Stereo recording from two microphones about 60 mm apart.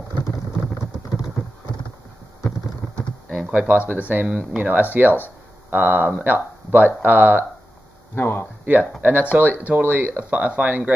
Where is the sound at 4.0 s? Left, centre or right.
Right.